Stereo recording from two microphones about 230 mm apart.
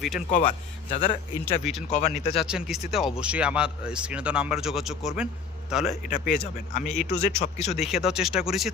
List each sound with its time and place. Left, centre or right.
0.3 s speech: left
2.4 s speech: centre
6.1 s speech: left
6.8 s speech: centre
7.1 s speech: left
7.9 s speech: centre